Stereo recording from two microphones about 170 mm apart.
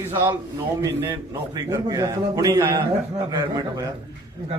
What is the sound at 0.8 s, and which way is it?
A man's voice, 15° right (ahead or behind).